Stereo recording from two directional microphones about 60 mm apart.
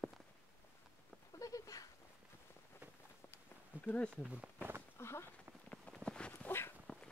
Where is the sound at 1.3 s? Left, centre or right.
Left.